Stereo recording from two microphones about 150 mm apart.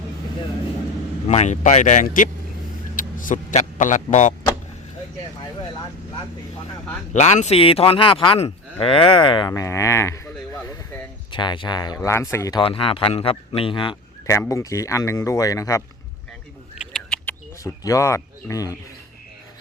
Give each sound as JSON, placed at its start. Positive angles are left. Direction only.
{"t": 1.3, "sound": "a man's voice", "side_deg": 50}
{"t": 7.1, "sound": "speech", "side_deg": 50}
{"t": 9.5, "sound": "speech", "side_deg": 20}
{"t": 11.3, "sound": "speech", "side_deg": 30}
{"t": 12.6, "sound": "speech", "side_deg": 35}
{"t": 14.3, "sound": "speech", "side_deg": 20}
{"t": 16.9, "sound": "a sound", "side_deg": 5}
{"t": 17.6, "sound": "speech", "side_deg": 20}